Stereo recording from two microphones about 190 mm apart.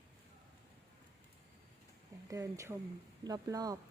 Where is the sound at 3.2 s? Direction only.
20° right (ahead or behind).